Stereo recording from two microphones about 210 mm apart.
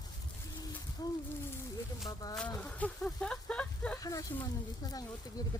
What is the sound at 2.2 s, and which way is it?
Speech, 15° left (ahead or behind).